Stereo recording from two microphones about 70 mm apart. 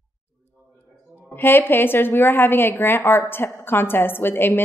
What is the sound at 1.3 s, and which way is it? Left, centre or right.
A woman's voice, left.